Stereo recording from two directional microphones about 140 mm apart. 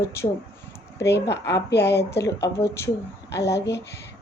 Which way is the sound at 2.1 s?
20° left (ahead or behind).